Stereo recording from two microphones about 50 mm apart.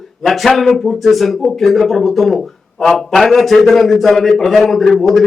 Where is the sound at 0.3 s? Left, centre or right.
Centre.